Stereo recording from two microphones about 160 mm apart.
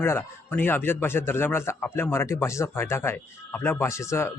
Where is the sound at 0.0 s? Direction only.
15° left (ahead or behind).